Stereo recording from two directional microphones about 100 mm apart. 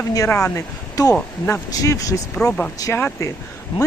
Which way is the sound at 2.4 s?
10° left (ahead or behind).